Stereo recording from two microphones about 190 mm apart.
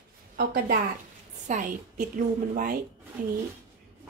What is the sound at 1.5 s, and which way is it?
A woman's voice, 40° right (ahead or behind).